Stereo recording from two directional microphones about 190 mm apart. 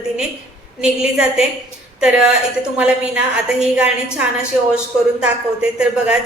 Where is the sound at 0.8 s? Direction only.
5° right (ahead or behind).